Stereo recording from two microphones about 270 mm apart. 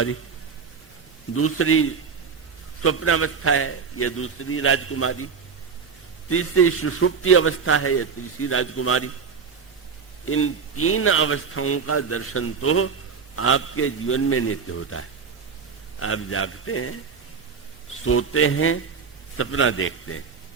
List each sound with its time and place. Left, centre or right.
1.3 s a man's voice: left
10.2 s a man's voice: left
18.0 s a man's voice: left